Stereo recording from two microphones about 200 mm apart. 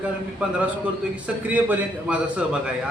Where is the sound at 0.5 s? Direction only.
5° right (ahead or behind).